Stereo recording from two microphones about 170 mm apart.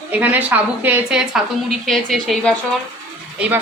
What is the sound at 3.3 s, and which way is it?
Speech, 10° right (ahead or behind).